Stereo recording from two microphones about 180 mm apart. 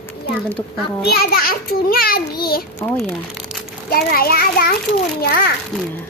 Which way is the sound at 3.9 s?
55° left (ahead or behind).